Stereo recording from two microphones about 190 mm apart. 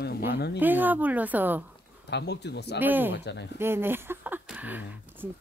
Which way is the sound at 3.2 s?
65° left (ahead or behind).